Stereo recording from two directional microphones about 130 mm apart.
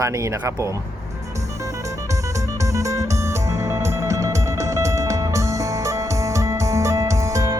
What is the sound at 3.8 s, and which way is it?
Music, 25° right (ahead or behind).